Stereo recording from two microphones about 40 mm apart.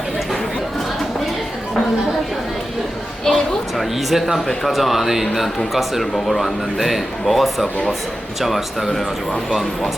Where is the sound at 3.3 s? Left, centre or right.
Centre.